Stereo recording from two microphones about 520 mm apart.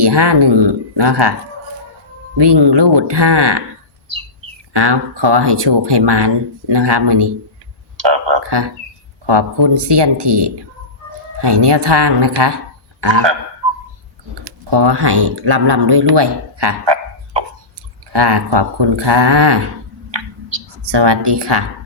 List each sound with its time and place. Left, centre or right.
0.0 s speech: right
2.4 s speech: right
4.7 s speech: right
7.9 s a sound: right
9.2 s speech: right
14.4 s speech: right
20.1 s a sound: right